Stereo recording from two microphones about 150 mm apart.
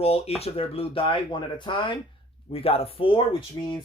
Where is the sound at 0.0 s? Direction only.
40° left (ahead or behind).